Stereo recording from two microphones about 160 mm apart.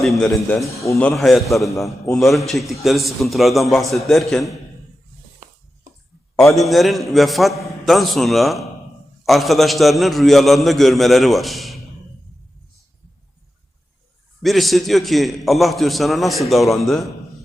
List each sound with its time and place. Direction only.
0.0 s a man's voice: centre (ahead or behind)
0.6 s a man's voice: 20° left (ahead or behind)
0.9 s a man's voice: 5° left (ahead or behind)
6.6 s a man's voice: centre (ahead or behind)
14.4 s a man's voice: centre (ahead or behind)